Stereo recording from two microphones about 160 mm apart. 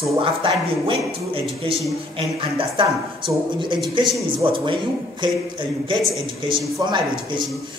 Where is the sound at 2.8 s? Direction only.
30° right (ahead or behind).